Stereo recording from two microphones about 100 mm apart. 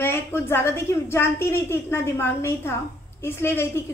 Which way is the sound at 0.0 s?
25° left (ahead or behind).